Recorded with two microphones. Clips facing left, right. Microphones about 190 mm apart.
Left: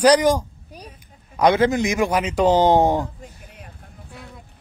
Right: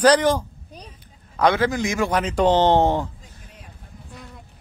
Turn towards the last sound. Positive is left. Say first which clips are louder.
# left 1 dB
turn(degrees=15)  # may be behind; listen again after turning